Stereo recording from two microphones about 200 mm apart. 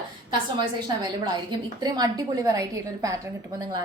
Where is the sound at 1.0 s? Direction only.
20° right (ahead or behind).